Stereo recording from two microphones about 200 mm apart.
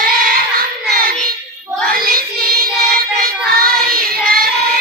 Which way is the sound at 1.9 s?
45° right (ahead or behind).